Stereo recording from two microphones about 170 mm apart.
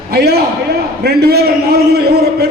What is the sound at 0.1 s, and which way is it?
A man's voice, 65° right (ahead or behind).